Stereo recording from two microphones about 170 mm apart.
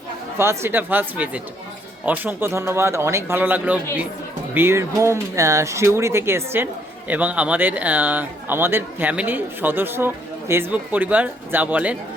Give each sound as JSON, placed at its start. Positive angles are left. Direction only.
{"t": 0.3, "sound": "speech", "side_deg": -15}